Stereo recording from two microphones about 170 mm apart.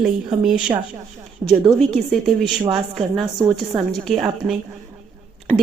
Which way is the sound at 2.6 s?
30° right (ahead or behind).